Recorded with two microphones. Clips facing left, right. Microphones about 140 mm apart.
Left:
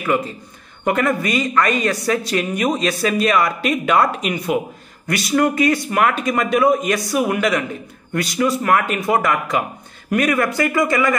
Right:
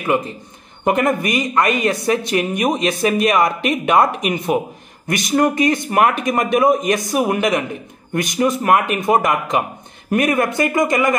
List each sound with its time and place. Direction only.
0.0 s a man's voice: 20° right (ahead or behind)